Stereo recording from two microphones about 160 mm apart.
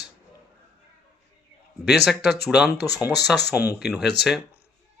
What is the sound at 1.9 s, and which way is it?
Speech, centre (ahead or behind).